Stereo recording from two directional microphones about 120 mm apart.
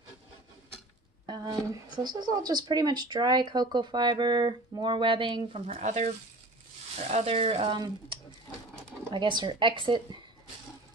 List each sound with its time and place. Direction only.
1.2 s speech: 35° right (ahead or behind); by 5.9 s 50° right (ahead or behind)
5.9 s speech: 85° right
7.0 s speech: 65° right (ahead or behind)
9.1 s speech: 40° right (ahead or behind)